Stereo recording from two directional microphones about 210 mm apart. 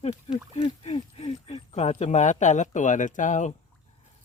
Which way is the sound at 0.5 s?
30° left (ahead or behind).